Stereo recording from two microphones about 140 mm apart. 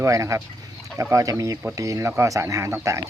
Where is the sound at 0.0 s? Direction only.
20° right (ahead or behind).